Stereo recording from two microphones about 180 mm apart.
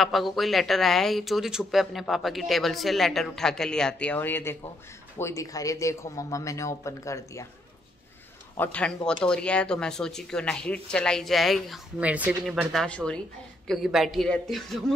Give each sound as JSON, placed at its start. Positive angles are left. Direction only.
{"t": 0.0, "sound": "speech", "side_deg": 0}
{"t": 8.5, "sound": "speech", "side_deg": 5}